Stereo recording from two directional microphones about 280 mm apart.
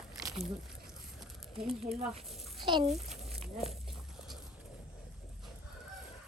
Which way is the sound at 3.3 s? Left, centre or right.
Centre.